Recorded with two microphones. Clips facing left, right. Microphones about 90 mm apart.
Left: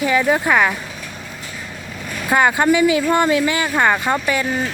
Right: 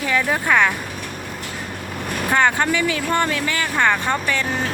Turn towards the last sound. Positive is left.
turn(degrees=10)  # may be behind; listen again after turning